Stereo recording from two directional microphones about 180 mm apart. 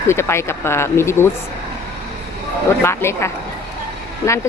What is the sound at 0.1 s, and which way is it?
Speech, 15° left (ahead or behind).